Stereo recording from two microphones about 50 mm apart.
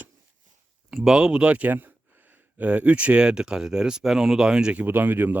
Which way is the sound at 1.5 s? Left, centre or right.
Right.